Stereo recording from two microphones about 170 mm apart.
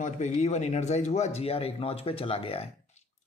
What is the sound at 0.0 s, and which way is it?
Speech, 45° left (ahead or behind).